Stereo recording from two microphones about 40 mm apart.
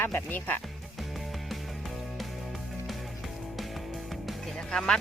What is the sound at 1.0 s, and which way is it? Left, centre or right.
Music, centre.